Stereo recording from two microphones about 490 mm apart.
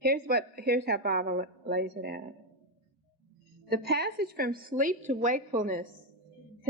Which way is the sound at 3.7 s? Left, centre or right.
Centre.